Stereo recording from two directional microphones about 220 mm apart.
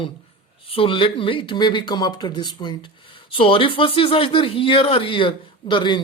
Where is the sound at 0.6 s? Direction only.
25° left (ahead or behind).